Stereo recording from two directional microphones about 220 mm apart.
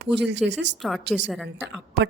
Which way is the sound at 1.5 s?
55° right (ahead or behind).